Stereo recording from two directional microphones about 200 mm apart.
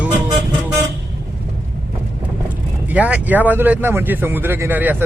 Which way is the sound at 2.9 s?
5° right (ahead or behind).